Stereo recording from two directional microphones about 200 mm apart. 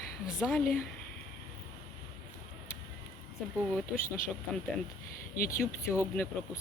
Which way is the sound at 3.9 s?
45° left (ahead or behind).